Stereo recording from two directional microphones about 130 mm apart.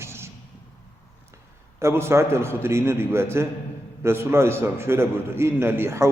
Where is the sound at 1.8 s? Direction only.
20° right (ahead or behind).